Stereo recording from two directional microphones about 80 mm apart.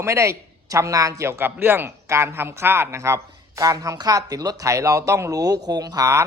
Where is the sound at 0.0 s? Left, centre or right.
Right.